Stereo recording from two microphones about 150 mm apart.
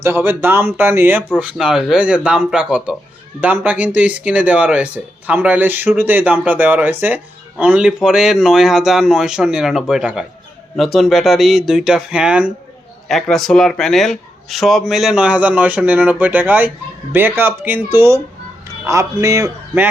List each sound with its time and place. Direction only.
0.0 s speech: 15° right (ahead or behind)
1.4 s a man's voice: 5° right (ahead or behind)